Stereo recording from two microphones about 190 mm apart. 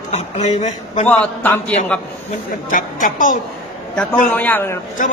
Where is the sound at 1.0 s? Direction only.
10° left (ahead or behind).